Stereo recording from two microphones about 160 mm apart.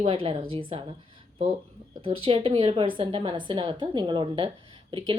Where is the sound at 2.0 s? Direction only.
35° right (ahead or behind).